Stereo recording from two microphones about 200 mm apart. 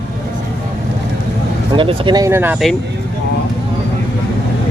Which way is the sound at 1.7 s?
25° right (ahead or behind).